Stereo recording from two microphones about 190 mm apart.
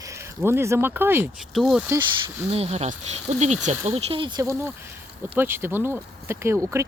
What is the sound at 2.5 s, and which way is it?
Speech, 35° right (ahead or behind).